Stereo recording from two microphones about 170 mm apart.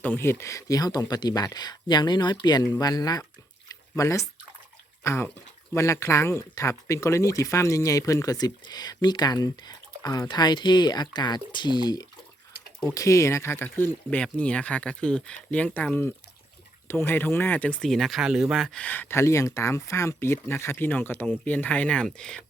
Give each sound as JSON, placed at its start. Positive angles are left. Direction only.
{"t": 0.0, "sound": "speech", "side_deg": 10}
{"t": 3.7, "sound": "drip", "side_deg": 20}
{"t": 5.0, "sound": "speech", "side_deg": 15}
{"t": 16.9, "sound": "speech", "side_deg": 10}